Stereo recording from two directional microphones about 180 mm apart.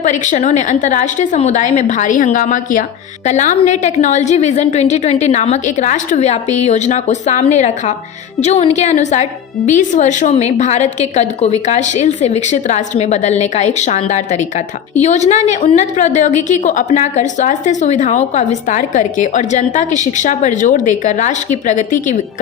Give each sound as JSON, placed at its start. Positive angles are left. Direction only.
{"t": 0.0, "sound": "a woman's voice", "side_deg": 40}